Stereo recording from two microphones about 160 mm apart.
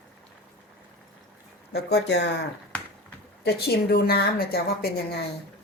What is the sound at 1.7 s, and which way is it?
Speech, 90° left.